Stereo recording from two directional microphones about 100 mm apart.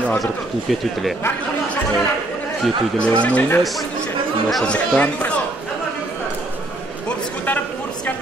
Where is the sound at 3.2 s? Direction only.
15° left (ahead or behind).